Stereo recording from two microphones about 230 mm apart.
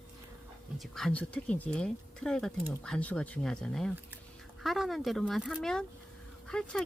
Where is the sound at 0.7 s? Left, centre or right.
Centre.